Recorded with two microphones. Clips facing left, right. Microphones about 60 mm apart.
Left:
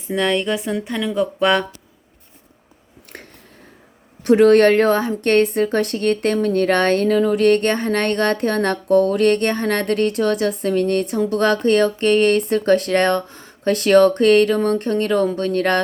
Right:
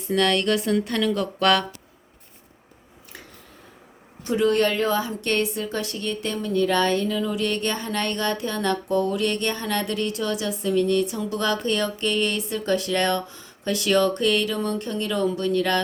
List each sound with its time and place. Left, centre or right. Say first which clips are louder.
0.1 s speech: left 2 dB; centre
4.2 s a woman's voice: left 9 dB; left